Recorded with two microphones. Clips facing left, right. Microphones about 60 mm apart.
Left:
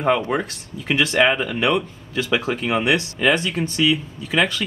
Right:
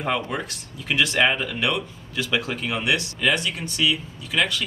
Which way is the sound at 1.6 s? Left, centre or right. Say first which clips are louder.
Left 5 dB; left.